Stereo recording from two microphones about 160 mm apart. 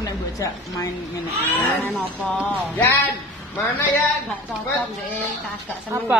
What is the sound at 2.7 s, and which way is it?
Speech, 10° left (ahead or behind).